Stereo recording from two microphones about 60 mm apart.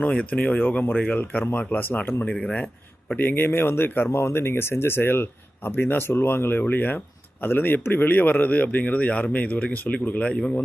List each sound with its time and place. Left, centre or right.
0.0 s speech: left
2.4 s speech: left
3.2 s speech: left
4.2 s speech: left